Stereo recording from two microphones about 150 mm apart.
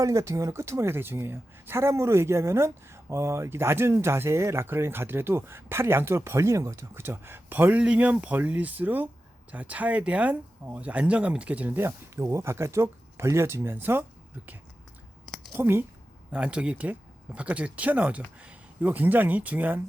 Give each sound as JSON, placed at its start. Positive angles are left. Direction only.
{"t": 0.0, "sound": "a woman's voice", "side_deg": -20}
{"t": 15.5, "sound": "a woman's voice", "side_deg": -15}